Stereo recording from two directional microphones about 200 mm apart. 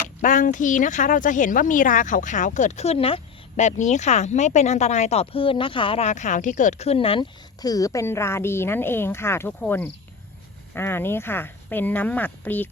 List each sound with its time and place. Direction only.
0.2 s speech: 40° left (ahead or behind); by 12.6 s 10° left (ahead or behind)